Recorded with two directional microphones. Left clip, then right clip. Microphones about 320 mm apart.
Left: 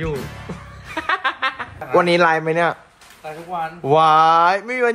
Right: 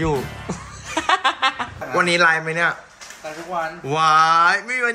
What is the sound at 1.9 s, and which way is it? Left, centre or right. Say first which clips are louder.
Speech: left 2 dB; centre.